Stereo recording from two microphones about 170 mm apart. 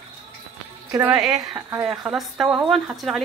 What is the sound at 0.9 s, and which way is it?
Speech, 15° right (ahead or behind).